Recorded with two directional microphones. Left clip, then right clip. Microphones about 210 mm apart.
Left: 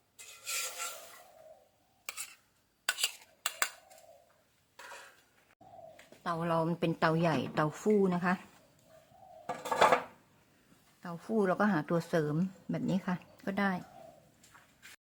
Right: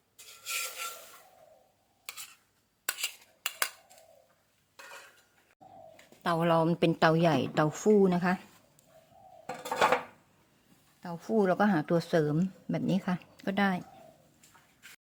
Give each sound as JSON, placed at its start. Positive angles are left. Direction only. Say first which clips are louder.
{"t": 0.4, "sound": "filing", "louder": "right 2 dB", "side_deg": 5}
{"t": 6.2, "sound": "a woman's voice", "louder": "right 6 dB", "side_deg": -30}
{"t": 9.6, "sound": "dishes", "louder": "even", "side_deg": 0}
{"t": 11.0, "sound": "a woman's voice", "louder": "right 4 dB", "side_deg": -20}